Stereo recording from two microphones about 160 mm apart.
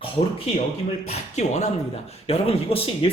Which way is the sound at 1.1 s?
45° left (ahead or behind).